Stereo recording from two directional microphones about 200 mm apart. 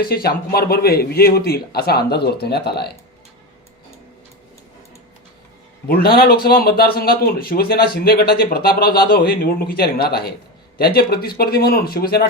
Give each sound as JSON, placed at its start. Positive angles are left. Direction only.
{"t": 0.0, "sound": "a man's voice", "side_deg": 50}
{"t": 5.9, "sound": "a man's voice", "side_deg": 50}